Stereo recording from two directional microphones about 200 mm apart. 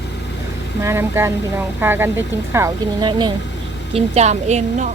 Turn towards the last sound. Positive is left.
turn(degrees=-35)  # may be behind; listen again after turning